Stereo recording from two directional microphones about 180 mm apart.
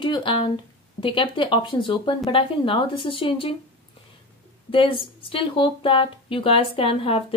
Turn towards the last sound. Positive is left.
turn(degrees=35)  # may be behind; listen again after turning